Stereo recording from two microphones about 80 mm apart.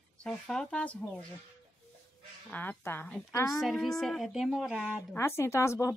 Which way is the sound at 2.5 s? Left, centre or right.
Left.